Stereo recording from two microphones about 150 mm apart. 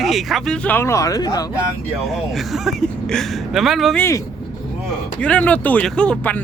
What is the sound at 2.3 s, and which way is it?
Speech, centre (ahead or behind).